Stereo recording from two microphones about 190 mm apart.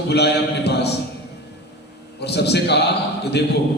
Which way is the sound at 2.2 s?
60° left (ahead or behind).